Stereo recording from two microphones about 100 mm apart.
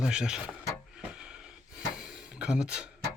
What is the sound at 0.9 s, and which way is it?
Gasp, 10° right (ahead or behind).